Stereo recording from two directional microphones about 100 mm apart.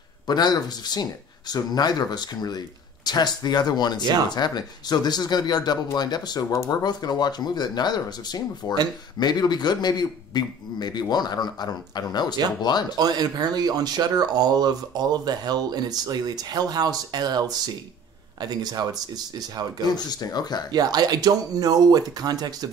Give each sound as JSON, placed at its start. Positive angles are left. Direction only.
{"t": 0.3, "sound": "a man's voice", "side_deg": 45}
{"t": 12.9, "sound": "speech", "side_deg": -40}
{"t": 19.9, "sound": "a man's voice", "side_deg": 45}
{"t": 20.7, "sound": "speech", "side_deg": -45}